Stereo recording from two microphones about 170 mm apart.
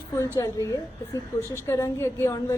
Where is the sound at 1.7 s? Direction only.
15° left (ahead or behind).